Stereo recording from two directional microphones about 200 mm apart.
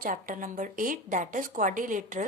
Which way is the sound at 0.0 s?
45° right (ahead or behind).